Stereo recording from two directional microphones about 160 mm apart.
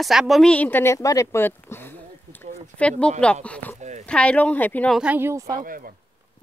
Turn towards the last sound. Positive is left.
turn(degrees=-60)  # may be behind; listen again after turning